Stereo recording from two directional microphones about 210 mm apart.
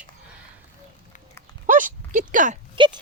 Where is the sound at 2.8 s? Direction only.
25° right (ahead or behind).